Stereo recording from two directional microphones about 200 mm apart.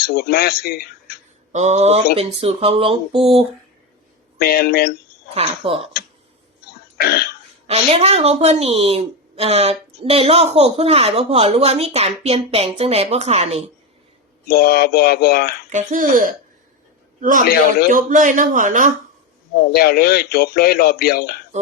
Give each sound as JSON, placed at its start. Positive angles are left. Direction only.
{"t": 0.0, "sound": "speech", "side_deg": 50}
{"t": 1.5, "sound": "a woman's voice", "side_deg": -35}
{"t": 4.4, "sound": "a man's voice", "side_deg": 50}
{"t": 5.3, "sound": "speech", "side_deg": -30}
{"t": 6.9, "sound": "throat clearing", "side_deg": 50}
{"t": 7.7, "sound": "a woman's voice", "side_deg": -30}
{"t": 14.4, "sound": "a man's voice", "side_deg": 50}
{"t": 15.7, "sound": "a woman's voice", "side_deg": -40}
{"t": 19.7, "sound": "a man's voice", "side_deg": 50}
{"t": 21.5, "sound": "a woman's voice", "side_deg": -35}